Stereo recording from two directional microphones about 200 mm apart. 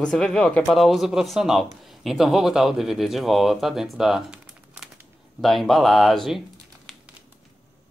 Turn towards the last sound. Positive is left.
turn(degrees=0)  # may be behind; listen again after turning